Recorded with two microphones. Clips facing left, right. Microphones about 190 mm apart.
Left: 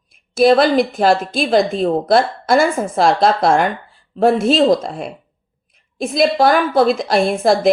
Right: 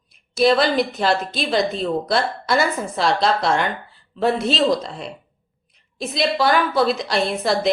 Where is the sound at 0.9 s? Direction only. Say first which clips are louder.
Left 6 dB; 50° left (ahead or behind).